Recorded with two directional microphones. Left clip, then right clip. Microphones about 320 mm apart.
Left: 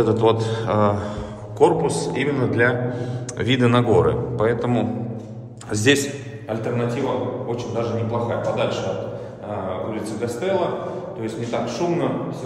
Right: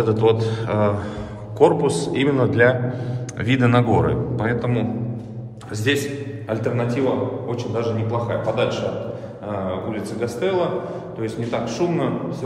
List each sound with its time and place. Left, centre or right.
0.0 s a man's voice: centre
5.9 s a man's voice: left
6.5 s a man's voice: centre
9.8 s a man's voice: centre